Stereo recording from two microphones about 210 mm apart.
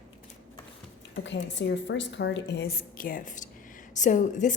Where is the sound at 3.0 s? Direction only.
40° left (ahead or behind).